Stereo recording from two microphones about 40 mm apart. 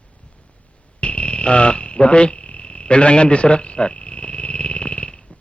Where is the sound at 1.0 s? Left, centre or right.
Left.